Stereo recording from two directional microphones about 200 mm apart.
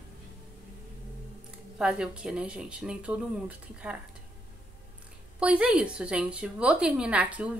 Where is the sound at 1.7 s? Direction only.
5° right (ahead or behind).